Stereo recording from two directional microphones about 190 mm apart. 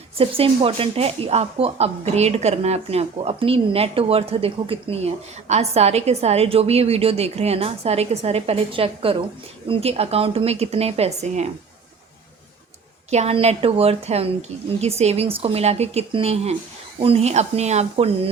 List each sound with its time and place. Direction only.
0.2 s speech: 30° right (ahead or behind)
13.1 s speech: 35° right (ahead or behind)